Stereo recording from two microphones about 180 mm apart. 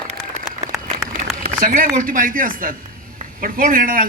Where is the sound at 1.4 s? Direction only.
50° right (ahead or behind).